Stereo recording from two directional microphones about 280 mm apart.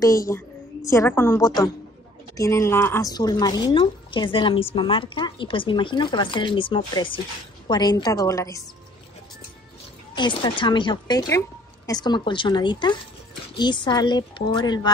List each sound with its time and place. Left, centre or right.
0.0 s a woman's voice: centre
10.1 s a woman's voice: centre